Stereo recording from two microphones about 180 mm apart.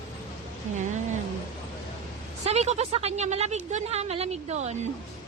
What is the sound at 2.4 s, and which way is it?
A woman's voice, 35° right (ahead or behind).